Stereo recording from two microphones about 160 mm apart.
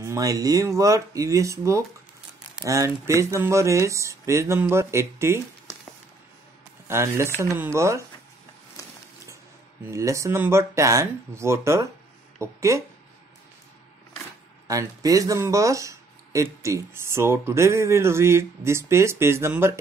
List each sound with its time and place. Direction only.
0.0 s speech: 20° right (ahead or behind)
6.9 s speech: 15° right (ahead or behind)
9.8 s speech: 20° right (ahead or behind)
14.7 s speech: 20° right (ahead or behind)